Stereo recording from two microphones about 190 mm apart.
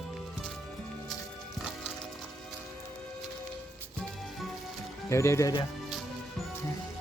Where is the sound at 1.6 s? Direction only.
Centre (ahead or behind).